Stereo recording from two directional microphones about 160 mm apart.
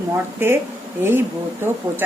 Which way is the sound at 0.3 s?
15° right (ahead or behind).